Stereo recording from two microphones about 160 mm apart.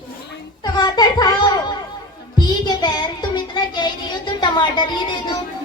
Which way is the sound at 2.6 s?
25° left (ahead or behind).